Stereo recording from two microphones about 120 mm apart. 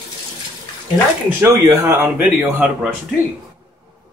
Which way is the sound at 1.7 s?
30° right (ahead or behind).